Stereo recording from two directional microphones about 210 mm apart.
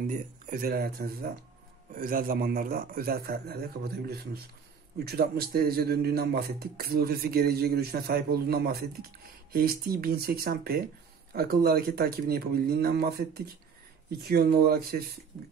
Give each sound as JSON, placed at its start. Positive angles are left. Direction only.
{"t": 0.0, "sound": "a man's voice", "side_deg": -40}